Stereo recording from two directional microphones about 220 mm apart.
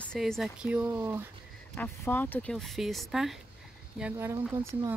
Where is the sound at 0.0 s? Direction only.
5° left (ahead or behind).